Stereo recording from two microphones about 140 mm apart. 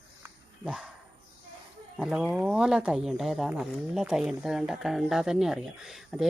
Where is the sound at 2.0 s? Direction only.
5° right (ahead or behind).